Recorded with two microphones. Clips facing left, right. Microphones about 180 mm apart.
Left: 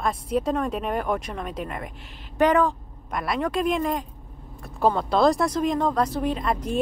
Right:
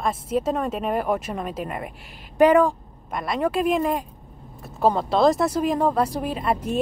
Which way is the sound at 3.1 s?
Centre (ahead or behind).